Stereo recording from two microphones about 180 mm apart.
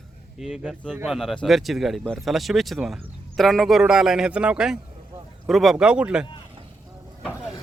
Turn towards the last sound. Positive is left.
turn(degrees=-5)  # may be behind; listen again after turning